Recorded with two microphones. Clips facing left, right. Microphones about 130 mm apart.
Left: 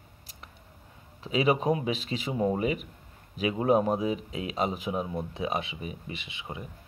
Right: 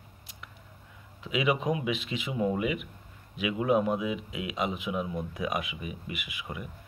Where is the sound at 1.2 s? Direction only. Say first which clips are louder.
Left 3 dB; 35° left (ahead or behind).